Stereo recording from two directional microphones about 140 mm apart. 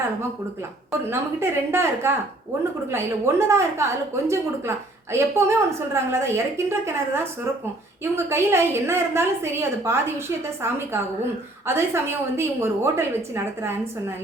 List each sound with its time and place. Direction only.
1.1 s a woman's voice: 20° right (ahead or behind)
11.6 s a woman's voice: 20° right (ahead or behind)